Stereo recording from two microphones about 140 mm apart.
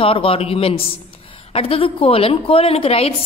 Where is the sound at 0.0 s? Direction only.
40° left (ahead or behind).